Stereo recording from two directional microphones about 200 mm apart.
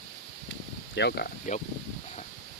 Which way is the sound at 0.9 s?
55° left (ahead or behind).